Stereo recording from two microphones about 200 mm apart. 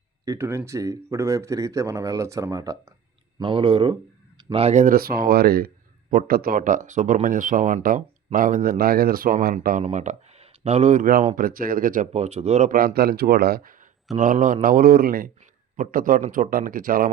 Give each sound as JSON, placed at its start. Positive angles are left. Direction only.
{"t": 0.3, "sound": "a man's voice", "side_deg": -15}
{"t": 9.8, "sound": "a man's voice", "side_deg": -35}